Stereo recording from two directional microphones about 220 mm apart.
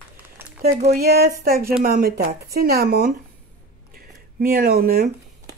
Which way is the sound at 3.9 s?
40° right (ahead or behind).